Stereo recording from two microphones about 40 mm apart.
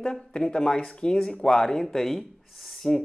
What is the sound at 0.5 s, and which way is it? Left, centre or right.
Speech, left.